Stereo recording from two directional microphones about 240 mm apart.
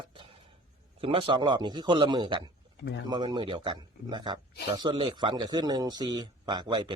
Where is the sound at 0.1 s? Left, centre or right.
Right.